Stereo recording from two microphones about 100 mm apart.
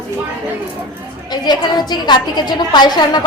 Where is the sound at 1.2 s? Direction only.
45° left (ahead or behind).